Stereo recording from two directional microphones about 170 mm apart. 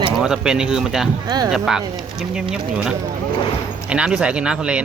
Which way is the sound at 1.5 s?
5° right (ahead or behind).